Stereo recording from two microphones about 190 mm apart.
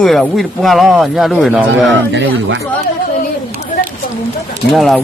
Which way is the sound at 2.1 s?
75° right (ahead or behind).